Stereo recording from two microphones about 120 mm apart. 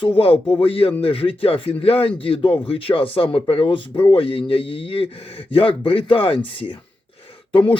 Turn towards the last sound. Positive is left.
turn(degrees=45)  # may be behind; listen again after turning